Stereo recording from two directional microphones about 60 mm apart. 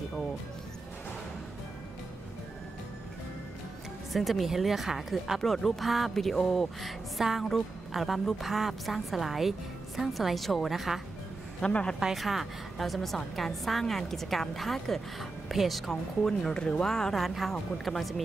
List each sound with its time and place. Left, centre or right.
4.1 s a woman's voice: centre
11.6 s speech: centre
12.0 s a woman's voice: centre
17.2 s a woman's voice: centre